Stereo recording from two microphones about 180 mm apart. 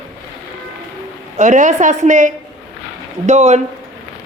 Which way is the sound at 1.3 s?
45° right (ahead or behind).